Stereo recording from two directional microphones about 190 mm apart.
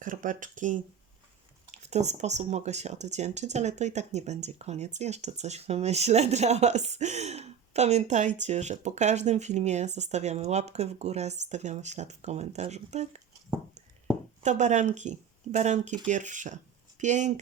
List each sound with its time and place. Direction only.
0.0 s speech: 45° right (ahead or behind)
14.4 s speech: 40° right (ahead or behind)